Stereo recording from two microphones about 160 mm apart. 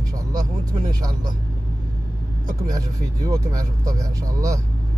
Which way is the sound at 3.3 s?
20° right (ahead or behind).